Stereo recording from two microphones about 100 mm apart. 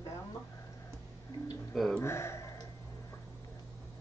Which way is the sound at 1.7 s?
5° left (ahead or behind).